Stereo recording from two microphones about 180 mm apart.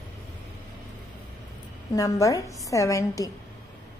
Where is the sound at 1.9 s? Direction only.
20° left (ahead or behind).